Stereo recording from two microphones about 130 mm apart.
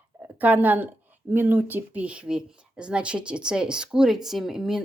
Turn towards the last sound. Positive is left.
turn(degrees=-5)  # may be behind; listen again after turning